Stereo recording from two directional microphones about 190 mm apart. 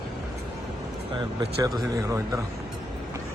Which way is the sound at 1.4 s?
20° right (ahead or behind).